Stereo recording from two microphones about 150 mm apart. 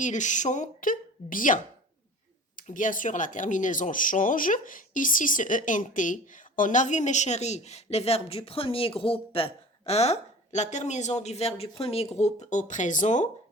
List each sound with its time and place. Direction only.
0.0 s speech: 55° left (ahead or behind)
2.6 s speech: 60° left (ahead or behind)